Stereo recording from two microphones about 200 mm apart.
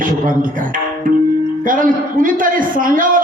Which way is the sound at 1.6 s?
40° right (ahead or behind).